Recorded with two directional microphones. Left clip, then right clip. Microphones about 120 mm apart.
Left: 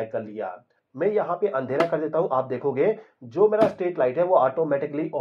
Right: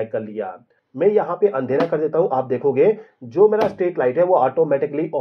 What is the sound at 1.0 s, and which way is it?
Speech, 25° right (ahead or behind).